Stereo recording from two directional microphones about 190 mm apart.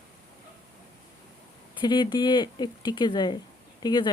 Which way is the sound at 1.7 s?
25° left (ahead or behind).